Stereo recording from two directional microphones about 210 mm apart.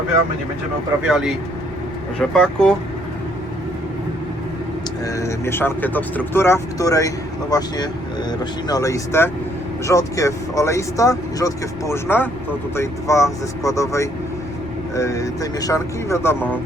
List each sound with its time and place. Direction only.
1.0 s speech: 5° right (ahead or behind)
5.0 s speech: 15° left (ahead or behind)